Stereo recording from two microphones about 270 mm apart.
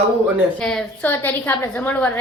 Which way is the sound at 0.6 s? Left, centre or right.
Centre.